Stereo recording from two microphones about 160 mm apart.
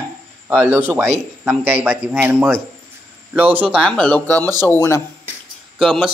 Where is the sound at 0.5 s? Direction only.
15° right (ahead or behind).